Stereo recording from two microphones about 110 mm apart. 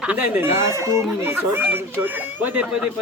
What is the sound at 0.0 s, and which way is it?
Speech, 15° right (ahead or behind).